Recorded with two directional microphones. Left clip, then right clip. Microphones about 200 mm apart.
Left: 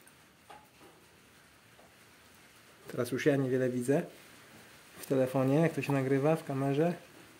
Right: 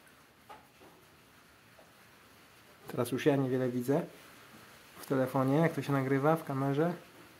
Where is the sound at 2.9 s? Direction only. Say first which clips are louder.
Even; 5° right (ahead or behind).